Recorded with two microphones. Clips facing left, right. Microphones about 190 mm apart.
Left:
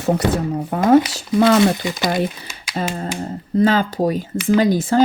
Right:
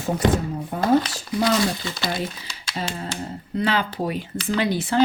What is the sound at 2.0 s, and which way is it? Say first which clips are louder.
A woman's voice: left 7 dB; 50° left (ahead or behind).